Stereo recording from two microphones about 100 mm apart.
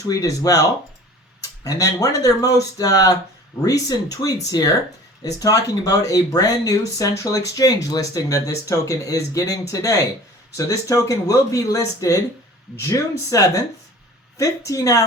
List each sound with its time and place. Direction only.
0.0 s speech: 35° left (ahead or behind)